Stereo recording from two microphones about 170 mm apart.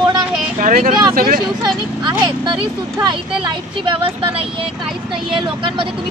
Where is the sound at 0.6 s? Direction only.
50° right (ahead or behind).